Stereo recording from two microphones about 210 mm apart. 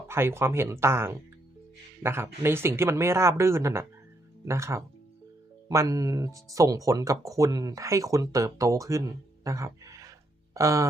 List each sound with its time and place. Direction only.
0.1 s speech: 10° right (ahead or behind)